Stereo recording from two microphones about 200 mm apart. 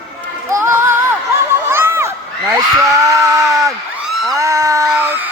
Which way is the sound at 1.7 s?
10° right (ahead or behind).